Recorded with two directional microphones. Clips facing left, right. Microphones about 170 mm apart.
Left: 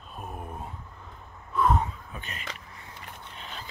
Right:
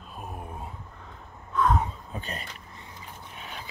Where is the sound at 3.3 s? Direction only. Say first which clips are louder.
Right 1 dB; 10° right (ahead or behind).